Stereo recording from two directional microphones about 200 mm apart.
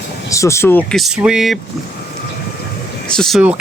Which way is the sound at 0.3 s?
15° left (ahead or behind).